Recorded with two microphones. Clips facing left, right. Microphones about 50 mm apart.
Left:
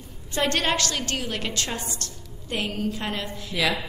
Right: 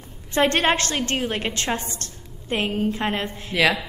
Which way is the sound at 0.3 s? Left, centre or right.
Right.